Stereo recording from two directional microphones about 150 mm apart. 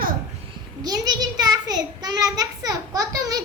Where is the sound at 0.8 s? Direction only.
25° right (ahead or behind).